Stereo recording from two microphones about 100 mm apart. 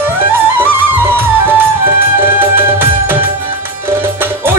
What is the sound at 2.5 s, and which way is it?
Music, 20° right (ahead or behind).